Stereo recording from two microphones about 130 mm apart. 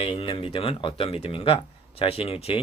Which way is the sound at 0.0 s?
45° left (ahead or behind).